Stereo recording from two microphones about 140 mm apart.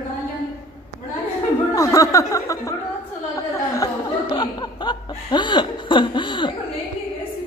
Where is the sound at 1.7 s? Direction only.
25° left (ahead or behind).